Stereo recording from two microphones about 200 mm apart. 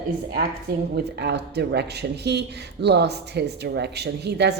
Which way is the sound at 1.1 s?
55° right (ahead or behind).